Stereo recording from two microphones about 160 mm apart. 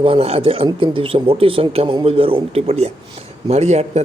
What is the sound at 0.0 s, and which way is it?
A man's voice, 35° right (ahead or behind).